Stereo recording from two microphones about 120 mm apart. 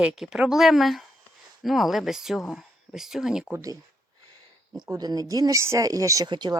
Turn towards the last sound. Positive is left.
turn(degrees=-40)  # may be behind; listen again after turning